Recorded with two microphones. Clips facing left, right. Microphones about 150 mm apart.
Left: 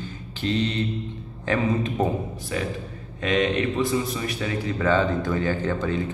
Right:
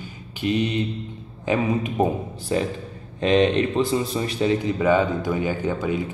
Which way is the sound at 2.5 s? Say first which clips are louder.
Right 6 dB; 30° right (ahead or behind).